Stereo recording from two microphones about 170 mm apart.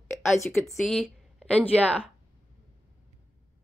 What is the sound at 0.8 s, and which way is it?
A woman's voice, centre (ahead or behind).